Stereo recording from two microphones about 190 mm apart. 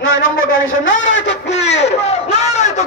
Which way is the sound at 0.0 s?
90° left.